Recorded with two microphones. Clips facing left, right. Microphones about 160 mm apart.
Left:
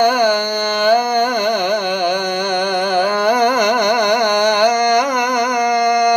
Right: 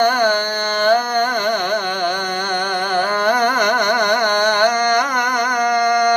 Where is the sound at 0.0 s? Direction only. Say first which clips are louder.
Left 2 dB; 15° left (ahead or behind).